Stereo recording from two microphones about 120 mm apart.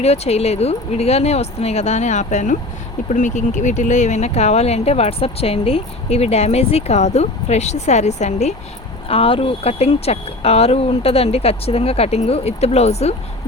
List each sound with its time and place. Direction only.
0.0 s speech: 60° left (ahead or behind)
9.0 s speech: 50° left (ahead or behind)